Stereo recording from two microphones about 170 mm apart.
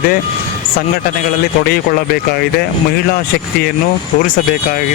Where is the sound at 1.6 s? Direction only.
60° left (ahead or behind).